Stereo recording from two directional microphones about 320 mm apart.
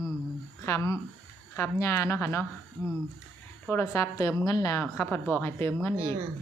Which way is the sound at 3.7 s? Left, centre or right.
Centre.